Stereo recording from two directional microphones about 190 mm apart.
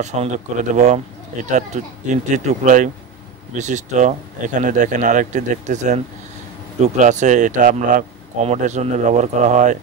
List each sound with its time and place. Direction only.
0.0 s speech: 35° right (ahead or behind)